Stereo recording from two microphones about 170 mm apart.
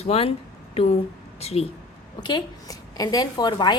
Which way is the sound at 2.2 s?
25° left (ahead or behind).